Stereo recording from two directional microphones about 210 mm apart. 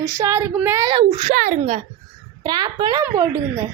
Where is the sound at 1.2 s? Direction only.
35° right (ahead or behind).